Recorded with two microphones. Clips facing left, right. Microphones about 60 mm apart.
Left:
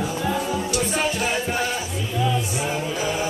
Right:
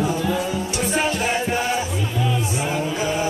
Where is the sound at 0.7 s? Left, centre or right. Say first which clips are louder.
Right 2 dB; centre.